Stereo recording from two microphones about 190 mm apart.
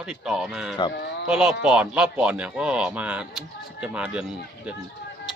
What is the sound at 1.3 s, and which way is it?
Speech, 5° right (ahead or behind).